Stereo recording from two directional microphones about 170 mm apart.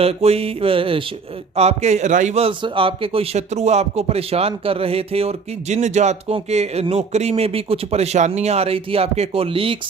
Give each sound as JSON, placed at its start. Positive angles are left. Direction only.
{"t": 0.0, "sound": "a man's voice", "side_deg": -35}